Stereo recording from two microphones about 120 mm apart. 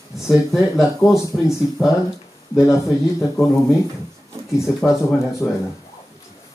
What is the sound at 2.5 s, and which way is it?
Speech, 25° left (ahead or behind).